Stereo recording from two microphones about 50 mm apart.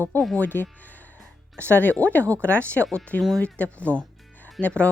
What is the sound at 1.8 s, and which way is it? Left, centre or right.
Speech, left.